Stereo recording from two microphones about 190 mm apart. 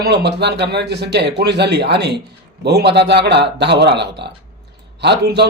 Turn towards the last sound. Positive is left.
turn(degrees=-60)  # may be behind; listen again after turning